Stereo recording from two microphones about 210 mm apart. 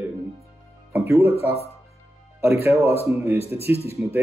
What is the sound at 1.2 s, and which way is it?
Speech, 30° left (ahead or behind).